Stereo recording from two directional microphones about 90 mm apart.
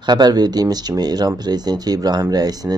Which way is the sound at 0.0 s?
50° right (ahead or behind).